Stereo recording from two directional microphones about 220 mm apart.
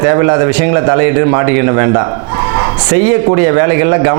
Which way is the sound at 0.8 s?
20° right (ahead or behind).